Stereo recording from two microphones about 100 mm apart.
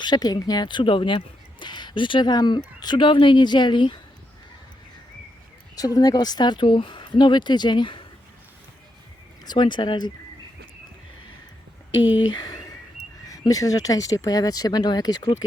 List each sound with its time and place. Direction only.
0.0 s speech: 45° left (ahead or behind)
5.7 s speech: 40° left (ahead or behind)
9.4 s speech: 45° left (ahead or behind)
12.3 s speech: 45° left (ahead or behind)